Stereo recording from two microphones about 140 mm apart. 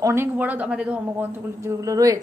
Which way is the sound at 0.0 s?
15° right (ahead or behind).